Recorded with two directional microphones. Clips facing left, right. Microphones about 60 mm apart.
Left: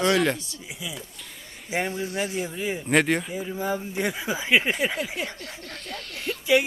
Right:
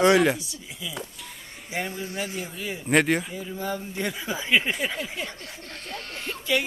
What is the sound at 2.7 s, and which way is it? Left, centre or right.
Speech, centre.